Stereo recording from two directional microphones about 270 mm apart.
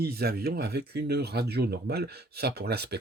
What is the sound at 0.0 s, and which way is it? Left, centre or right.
Speech, right.